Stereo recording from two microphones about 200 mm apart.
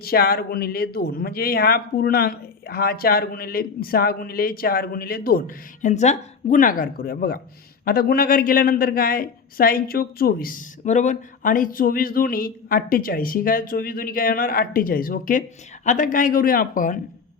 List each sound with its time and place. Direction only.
0.0 s speech: 50° left (ahead or behind)